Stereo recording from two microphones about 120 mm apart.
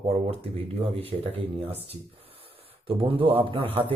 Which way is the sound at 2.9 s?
50° right (ahead or behind).